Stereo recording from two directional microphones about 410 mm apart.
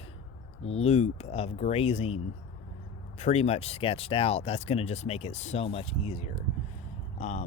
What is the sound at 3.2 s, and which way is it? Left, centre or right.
Speech, centre.